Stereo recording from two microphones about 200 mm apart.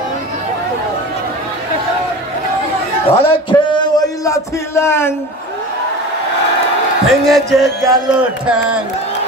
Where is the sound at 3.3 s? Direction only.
25° left (ahead or behind).